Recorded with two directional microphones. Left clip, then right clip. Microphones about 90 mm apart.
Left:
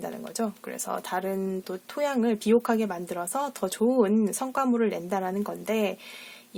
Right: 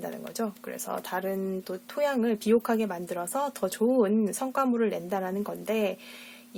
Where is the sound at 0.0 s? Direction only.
35° left (ahead or behind).